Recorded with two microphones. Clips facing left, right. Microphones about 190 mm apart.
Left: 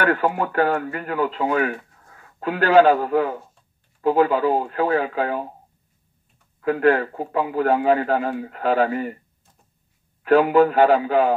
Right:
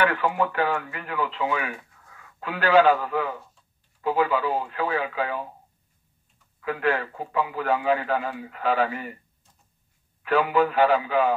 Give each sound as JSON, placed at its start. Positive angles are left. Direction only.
{"t": 0.0, "sound": "speech", "side_deg": 45}
{"t": 6.6, "sound": "speech", "side_deg": 45}
{"t": 10.2, "sound": "speech", "side_deg": 45}